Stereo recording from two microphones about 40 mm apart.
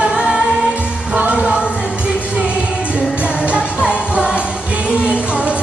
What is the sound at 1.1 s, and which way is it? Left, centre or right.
Music, right.